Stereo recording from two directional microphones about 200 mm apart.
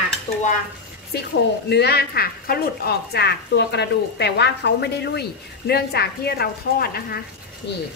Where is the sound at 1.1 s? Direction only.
55° left (ahead or behind).